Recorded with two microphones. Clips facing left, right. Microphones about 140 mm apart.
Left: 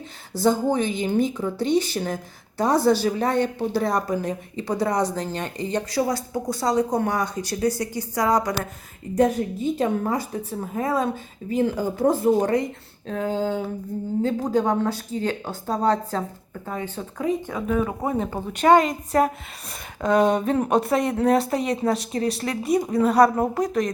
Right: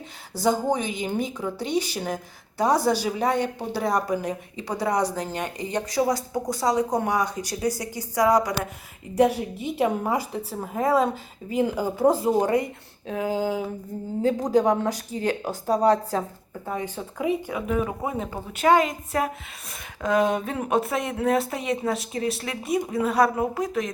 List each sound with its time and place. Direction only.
0.4 s a woman's voice: 10° right (ahead or behind)
9.3 s a woman's voice: 80° right
9.7 s a woman's voice: 10° right (ahead or behind)